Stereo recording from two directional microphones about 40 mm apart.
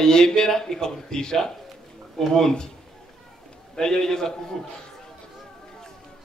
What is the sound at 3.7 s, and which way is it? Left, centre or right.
Speech, centre.